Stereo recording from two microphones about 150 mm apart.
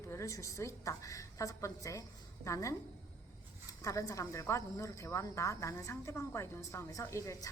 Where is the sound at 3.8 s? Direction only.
20° left (ahead or behind).